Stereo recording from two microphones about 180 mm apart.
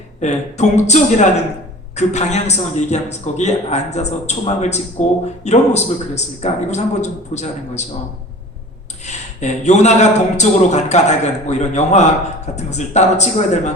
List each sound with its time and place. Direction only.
0.2 s a man's voice: 40° left (ahead or behind)
9.0 s a man's voice: 40° left (ahead or behind)